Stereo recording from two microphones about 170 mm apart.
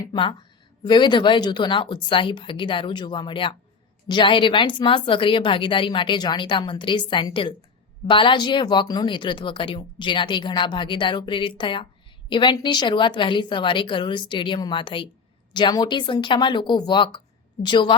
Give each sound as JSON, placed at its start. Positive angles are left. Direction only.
{"t": 0.0, "sound": "speech", "side_deg": 25}